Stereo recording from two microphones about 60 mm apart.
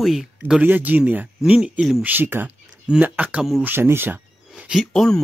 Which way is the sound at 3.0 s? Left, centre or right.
Right.